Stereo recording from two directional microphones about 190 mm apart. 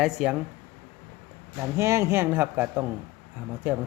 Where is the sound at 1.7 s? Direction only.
15° right (ahead or behind).